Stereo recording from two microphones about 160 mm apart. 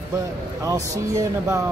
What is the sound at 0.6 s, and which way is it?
Speech, 20° right (ahead or behind).